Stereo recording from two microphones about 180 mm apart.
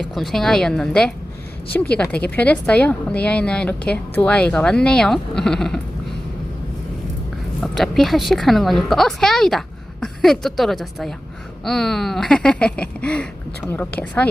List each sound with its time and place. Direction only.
0.0 s a woman's voice: centre (ahead or behind)
7.6 s a woman's voice: centre (ahead or behind)